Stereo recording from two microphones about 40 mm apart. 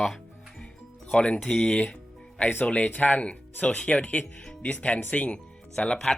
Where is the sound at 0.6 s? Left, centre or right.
Left.